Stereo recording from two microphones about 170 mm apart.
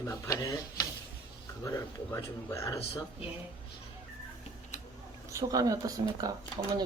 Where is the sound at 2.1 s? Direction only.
15° left (ahead or behind).